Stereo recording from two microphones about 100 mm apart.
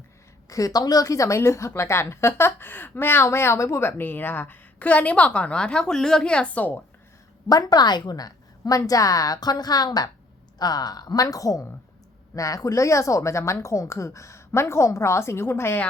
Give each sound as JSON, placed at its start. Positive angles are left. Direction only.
{"t": 0.4, "sound": "a woman's voice", "side_deg": 35}
{"t": 7.4, "sound": "a woman's voice", "side_deg": 40}